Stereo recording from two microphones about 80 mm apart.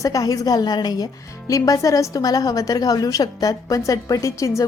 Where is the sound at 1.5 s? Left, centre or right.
Left.